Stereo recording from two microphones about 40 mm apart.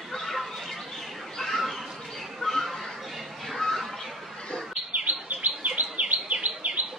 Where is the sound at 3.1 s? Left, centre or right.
Centre.